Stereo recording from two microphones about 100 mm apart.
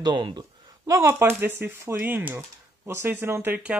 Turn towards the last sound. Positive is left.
turn(degrees=-15)  # may be behind; listen again after turning